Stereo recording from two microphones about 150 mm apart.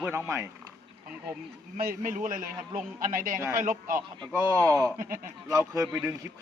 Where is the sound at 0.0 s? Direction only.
15° right (ahead or behind).